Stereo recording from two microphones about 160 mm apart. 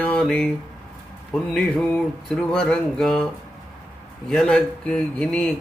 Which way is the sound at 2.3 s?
5° left (ahead or behind).